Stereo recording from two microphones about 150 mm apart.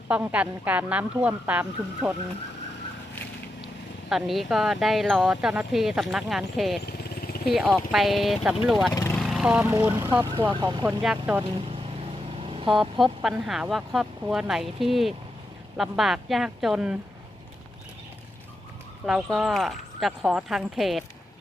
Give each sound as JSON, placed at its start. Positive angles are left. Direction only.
{"t": 0.1, "sound": "speech", "side_deg": -10}
{"t": 4.1, "sound": "speech", "side_deg": 0}
{"t": 6.8, "sound": "vehicle", "side_deg": 90}
{"t": 7.4, "sound": "speech", "side_deg": -5}
{"t": 9.1, "sound": "vehicle", "side_deg": 0}
{"t": 9.9, "sound": "speech", "side_deg": -30}
{"t": 10.8, "sound": "speech", "side_deg": -10}
{"t": 12.4, "sound": "vehicle", "side_deg": -40}
{"t": 12.6, "sound": "speech", "side_deg": 0}
{"t": 19.0, "sound": "speech", "side_deg": 0}